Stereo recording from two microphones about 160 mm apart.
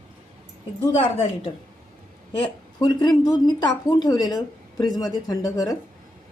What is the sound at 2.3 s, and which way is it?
A woman's voice, 30° left (ahead or behind).